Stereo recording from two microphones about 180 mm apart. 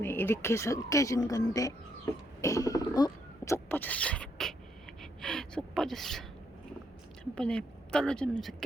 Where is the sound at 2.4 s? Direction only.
20° left (ahead or behind).